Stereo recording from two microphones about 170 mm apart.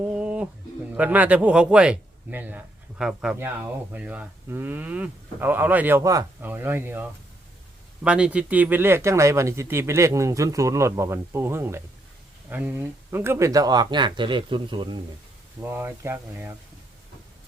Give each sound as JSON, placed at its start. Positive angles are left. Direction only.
{"t": 0.0, "sound": "pigeon", "side_deg": -5}
{"t": 0.9, "sound": "a man's voice", "side_deg": -10}
{"t": 3.3, "sound": "speech", "side_deg": -15}
{"t": 15.6, "sound": "speech", "side_deg": -15}